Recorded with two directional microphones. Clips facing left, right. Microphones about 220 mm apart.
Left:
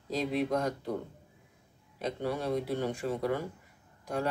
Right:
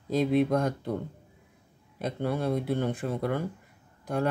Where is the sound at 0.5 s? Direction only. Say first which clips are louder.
Right 4 dB; 50° right (ahead or behind).